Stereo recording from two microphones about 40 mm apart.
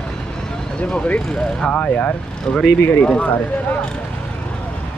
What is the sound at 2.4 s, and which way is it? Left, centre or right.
Speech, centre.